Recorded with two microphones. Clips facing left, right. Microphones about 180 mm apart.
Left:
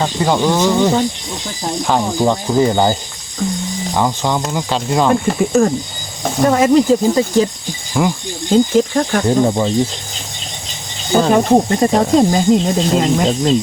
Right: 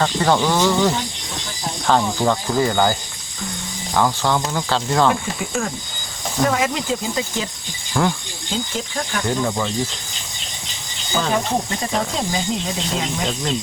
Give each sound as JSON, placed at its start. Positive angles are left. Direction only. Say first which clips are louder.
{"t": 0.0, "sound": "speech", "louder": "left 2 dB", "side_deg": 15}
{"t": 3.9, "sound": "speech", "louder": "left 1 dB", "side_deg": 15}
{"t": 5.4, "sound": "speech", "louder": "left 12 dB", "side_deg": 40}
{"t": 8.0, "sound": "speech", "louder": "left 3 dB", "side_deg": 10}
{"t": 8.4, "sound": "speech", "louder": "left 14 dB", "side_deg": 45}
{"t": 9.3, "sound": "speech", "louder": "left 7 dB", "side_deg": 35}
{"t": 11.2, "sound": "speech", "louder": "left 9 dB", "side_deg": 50}